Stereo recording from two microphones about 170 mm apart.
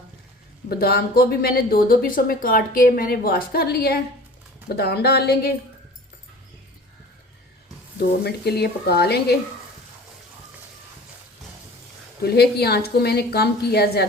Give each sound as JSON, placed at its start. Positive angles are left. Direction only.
{"t": 0.7, "sound": "a woman's voice", "side_deg": 65}
{"t": 7.9, "sound": "a woman's voice", "side_deg": 70}
{"t": 12.2, "sound": "a woman's voice", "side_deg": 70}